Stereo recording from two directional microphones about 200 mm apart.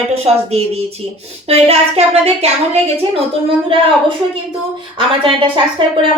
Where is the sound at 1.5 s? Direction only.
30° right (ahead or behind).